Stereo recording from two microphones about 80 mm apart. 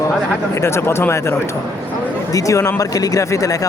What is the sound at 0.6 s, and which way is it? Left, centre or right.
Speech, left.